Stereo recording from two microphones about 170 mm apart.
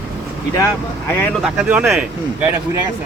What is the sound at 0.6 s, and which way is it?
Speech, 10° left (ahead or behind).